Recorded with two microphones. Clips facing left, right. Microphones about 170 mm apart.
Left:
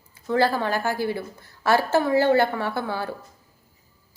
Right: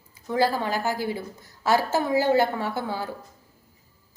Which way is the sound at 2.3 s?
15° right (ahead or behind).